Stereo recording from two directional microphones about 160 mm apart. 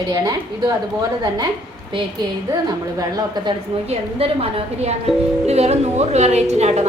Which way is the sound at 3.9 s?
35° right (ahead or behind).